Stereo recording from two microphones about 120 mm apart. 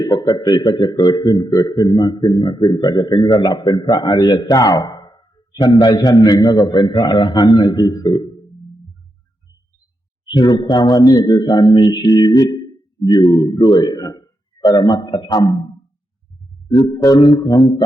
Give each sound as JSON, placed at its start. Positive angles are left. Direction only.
{"t": 0.0, "sound": "a man's voice", "side_deg": 35}
{"t": 10.2, "sound": "a man's voice", "side_deg": 35}
{"t": 16.7, "sound": "a man's voice", "side_deg": 30}